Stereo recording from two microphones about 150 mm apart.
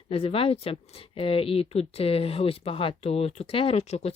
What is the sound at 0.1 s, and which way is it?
Speech, 40° left (ahead or behind).